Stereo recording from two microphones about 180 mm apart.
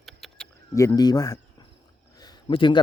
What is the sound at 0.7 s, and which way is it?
Speech, 20° left (ahead or behind).